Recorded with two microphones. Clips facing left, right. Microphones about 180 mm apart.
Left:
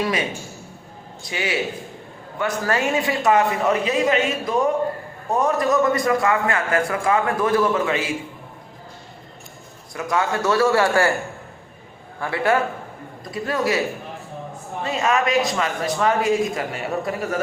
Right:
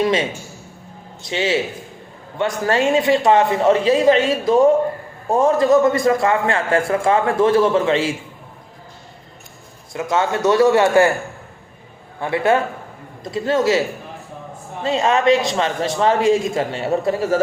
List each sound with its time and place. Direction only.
0.0 s a man's voice: 25° right (ahead or behind)
1.3 s a man's voice: 25° right (ahead or behind)
9.9 s a man's voice: 25° right (ahead or behind)
12.2 s a man's voice: 20° right (ahead or behind)
14.8 s a man's voice: 25° right (ahead or behind)